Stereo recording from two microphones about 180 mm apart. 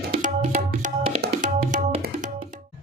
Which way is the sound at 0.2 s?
45° right (ahead or behind).